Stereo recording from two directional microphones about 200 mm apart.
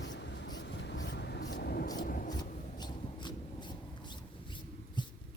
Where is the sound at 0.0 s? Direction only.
60° left (ahead or behind).